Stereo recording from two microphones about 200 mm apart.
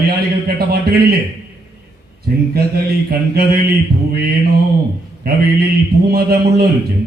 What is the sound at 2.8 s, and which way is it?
Mantra, 50° right (ahead or behind).